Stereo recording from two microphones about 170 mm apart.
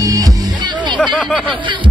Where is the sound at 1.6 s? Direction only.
30° right (ahead or behind).